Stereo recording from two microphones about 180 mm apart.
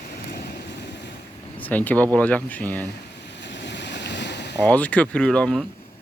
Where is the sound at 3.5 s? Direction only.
75° left (ahead or behind).